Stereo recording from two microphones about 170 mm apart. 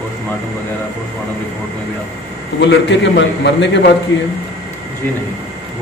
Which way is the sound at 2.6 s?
90° left.